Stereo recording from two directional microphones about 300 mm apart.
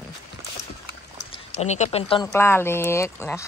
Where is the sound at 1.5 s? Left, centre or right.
Left.